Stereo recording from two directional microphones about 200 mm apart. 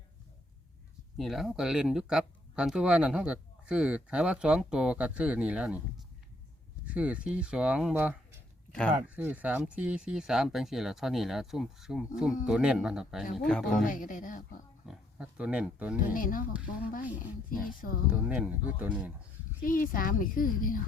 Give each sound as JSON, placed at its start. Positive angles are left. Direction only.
{"t": 1.1, "sound": "speech", "side_deg": 0}
{"t": 13.8, "sound": "speech", "side_deg": 40}
{"t": 14.8, "sound": "speech", "side_deg": -5}
{"t": 16.1, "sound": "speech", "side_deg": 45}
{"t": 17.7, "sound": "speech", "side_deg": 45}
{"t": 18.1, "sound": "speech", "side_deg": -5}
{"t": 19.6, "sound": "speech", "side_deg": 45}